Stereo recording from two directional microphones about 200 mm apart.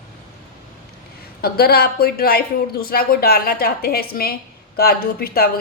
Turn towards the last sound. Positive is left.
turn(degrees=50)  # may be behind; listen again after turning